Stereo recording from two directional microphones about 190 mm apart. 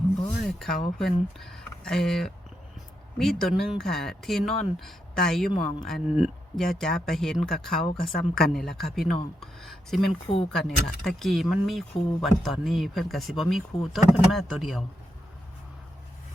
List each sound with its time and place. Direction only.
0.4 s speech: centre (ahead or behind)
9.4 s a sound: centre (ahead or behind)
10.5 s speech: 5° left (ahead or behind)